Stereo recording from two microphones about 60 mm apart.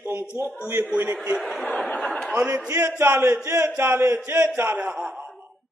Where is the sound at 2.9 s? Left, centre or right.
Right.